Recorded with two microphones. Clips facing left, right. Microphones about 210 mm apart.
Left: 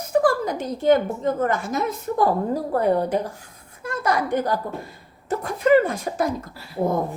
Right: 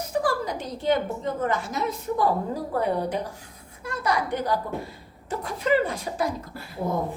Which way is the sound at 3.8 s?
45° left (ahead or behind).